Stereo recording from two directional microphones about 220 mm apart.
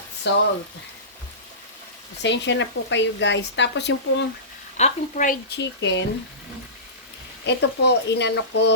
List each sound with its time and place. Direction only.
0.3 s speech: 50° left (ahead or behind)
2.2 s speech: 55° left (ahead or behind)
4.8 s speech: 35° left (ahead or behind); by 6.1 s 55° left (ahead or behind)
7.4 s speech: 50° left (ahead or behind)